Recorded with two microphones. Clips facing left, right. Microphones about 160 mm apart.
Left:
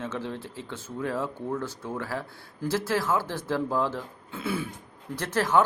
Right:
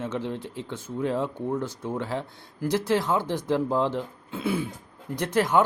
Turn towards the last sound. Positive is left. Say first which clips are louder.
# right 2 dB
turn(degrees=-15)  # may be behind; listen again after turning